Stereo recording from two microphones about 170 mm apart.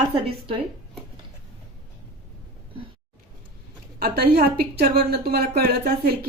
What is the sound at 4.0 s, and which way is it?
A woman's voice, 65° right (ahead or behind).